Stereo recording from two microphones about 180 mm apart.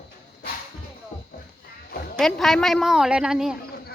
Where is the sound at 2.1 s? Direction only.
Centre (ahead or behind).